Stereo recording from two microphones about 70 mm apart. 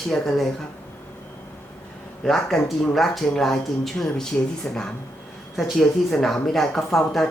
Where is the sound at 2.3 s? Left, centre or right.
Centre.